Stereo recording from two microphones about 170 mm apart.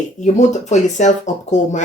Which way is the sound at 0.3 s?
45° left (ahead or behind).